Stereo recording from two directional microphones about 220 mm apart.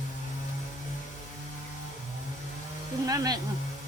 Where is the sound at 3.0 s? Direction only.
15° right (ahead or behind).